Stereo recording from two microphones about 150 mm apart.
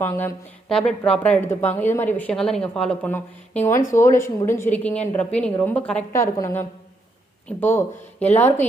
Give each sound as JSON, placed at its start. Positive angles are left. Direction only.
{"t": 0.0, "sound": "a woman's voice", "side_deg": 15}
{"t": 0.7, "sound": "a woman's voice", "side_deg": 5}
{"t": 6.1, "sound": "a woman's voice", "side_deg": 20}